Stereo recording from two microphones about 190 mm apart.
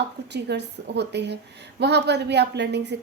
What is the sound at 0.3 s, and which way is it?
A woman's voice, 60° right (ahead or behind).